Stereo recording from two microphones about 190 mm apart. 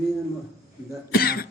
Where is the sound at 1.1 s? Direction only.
55° left (ahead or behind).